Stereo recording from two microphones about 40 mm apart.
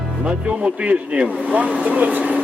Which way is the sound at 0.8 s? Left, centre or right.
Right.